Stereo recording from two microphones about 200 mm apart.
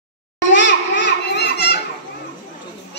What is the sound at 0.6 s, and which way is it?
Children playing, 65° left (ahead or behind).